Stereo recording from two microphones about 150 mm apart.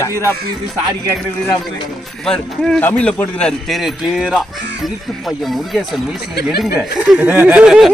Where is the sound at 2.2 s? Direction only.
5° left (ahead or behind).